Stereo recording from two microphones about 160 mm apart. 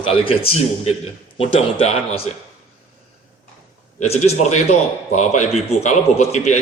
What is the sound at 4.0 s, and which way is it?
A man's voice, 45° left (ahead or behind).